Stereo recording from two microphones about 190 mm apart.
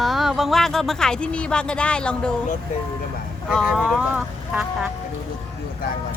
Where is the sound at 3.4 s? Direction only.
5° right (ahead or behind).